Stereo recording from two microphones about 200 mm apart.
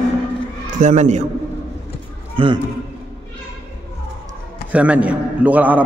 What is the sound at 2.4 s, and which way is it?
Speech, 25° right (ahead or behind).